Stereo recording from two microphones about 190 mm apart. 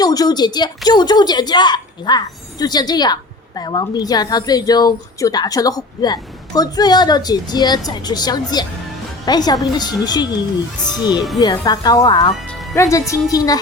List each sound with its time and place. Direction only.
0.0 s a woman's voice: 20° left (ahead or behind)